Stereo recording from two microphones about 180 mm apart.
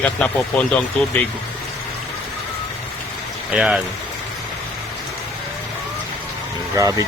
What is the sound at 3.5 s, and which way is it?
Speech, 5° right (ahead or behind).